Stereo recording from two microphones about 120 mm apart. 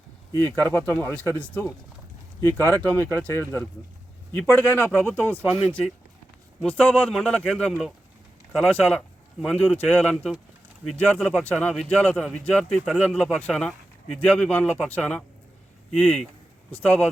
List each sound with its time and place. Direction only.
0.3 s a man's voice: 15° left (ahead or behind)
5.5 s a man's voice: 5° left (ahead or behind)